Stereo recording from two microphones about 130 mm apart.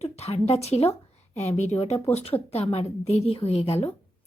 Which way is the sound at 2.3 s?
25° left (ahead or behind).